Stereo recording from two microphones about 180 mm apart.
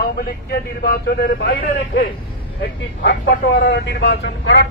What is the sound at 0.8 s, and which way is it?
Speech, 55° left (ahead or behind).